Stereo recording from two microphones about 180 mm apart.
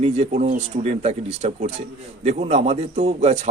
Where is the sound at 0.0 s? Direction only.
35° right (ahead or behind).